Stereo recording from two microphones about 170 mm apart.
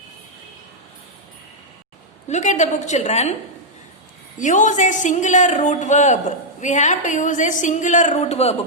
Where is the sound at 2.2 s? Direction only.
45° left (ahead or behind).